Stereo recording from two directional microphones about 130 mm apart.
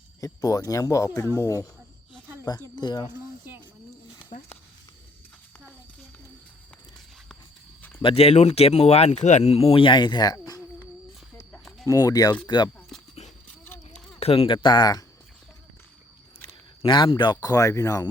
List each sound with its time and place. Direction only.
0.2 s speech: 25° left (ahead or behind)
2.5 s speech: 30° left (ahead or behind)
4.3 s speech: 75° left (ahead or behind)
8.0 s speech: 50° left (ahead or behind); by 10.6 s 30° left (ahead or behind)
11.9 s speech: 25° left (ahead or behind)
14.2 s speech: 50° left (ahead or behind); by 15.0 s 30° left (ahead or behind)
16.8 s speech: 40° left (ahead or behind)
17.3 s speech: 25° left (ahead or behind)